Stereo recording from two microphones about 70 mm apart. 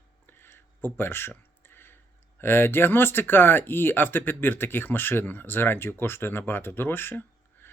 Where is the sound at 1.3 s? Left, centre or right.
Left.